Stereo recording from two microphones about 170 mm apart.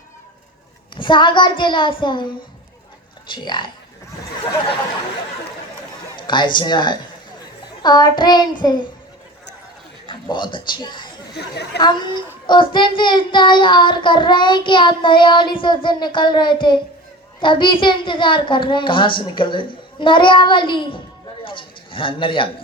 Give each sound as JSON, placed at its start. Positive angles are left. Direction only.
{"t": 0.9, "sound": "child singing", "side_deg": 30}
{"t": 6.1, "sound": "child singing", "side_deg": 25}
{"t": 10.1, "sound": "speech", "side_deg": 25}
{"t": 11.3, "sound": "speech", "side_deg": 75}
{"t": 11.8, "sound": "child singing", "side_deg": 25}
{"t": 21.4, "sound": "a man's voice", "side_deg": 30}